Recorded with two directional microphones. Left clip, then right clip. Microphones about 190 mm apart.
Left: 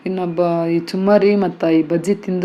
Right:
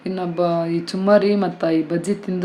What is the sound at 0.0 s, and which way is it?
Speech, 15° left (ahead or behind).